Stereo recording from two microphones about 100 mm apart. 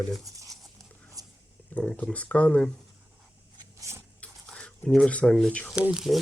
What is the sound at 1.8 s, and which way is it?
Speech, 10° left (ahead or behind).